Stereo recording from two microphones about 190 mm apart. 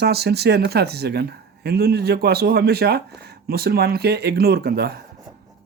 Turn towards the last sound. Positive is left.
turn(degrees=-55)  # may be behind; listen again after turning